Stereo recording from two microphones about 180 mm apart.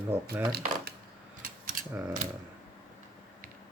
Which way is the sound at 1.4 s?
50° right (ahead or behind).